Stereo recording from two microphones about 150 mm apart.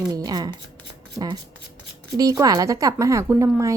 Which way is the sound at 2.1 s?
25° right (ahead or behind).